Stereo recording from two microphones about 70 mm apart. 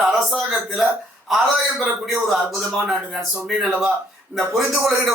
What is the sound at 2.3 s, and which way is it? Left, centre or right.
Speech, centre.